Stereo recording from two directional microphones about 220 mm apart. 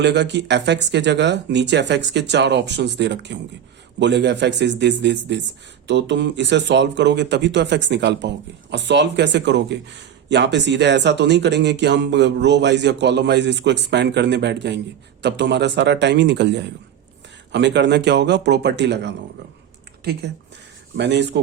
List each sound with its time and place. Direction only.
0.0 s speech: 50° right (ahead or behind)
20.9 s speech: 50° right (ahead or behind)